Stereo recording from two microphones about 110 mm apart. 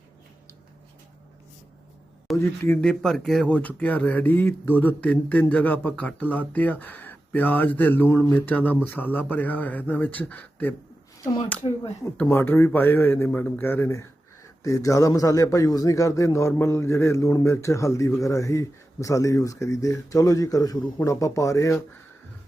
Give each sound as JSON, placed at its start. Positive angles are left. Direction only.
{"t": 2.3, "sound": "a man's voice", "side_deg": 25}
{"t": 2.8, "sound": "speech", "side_deg": 5}
{"t": 12.3, "sound": "a man's voice", "side_deg": 20}